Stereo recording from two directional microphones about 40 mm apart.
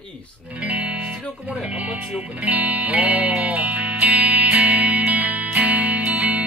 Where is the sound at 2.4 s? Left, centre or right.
Right.